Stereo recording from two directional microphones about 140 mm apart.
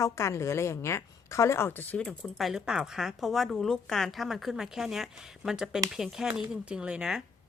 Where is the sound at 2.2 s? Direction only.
Centre (ahead or behind).